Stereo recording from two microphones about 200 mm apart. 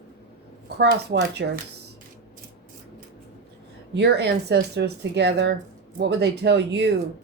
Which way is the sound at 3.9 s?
55° right (ahead or behind).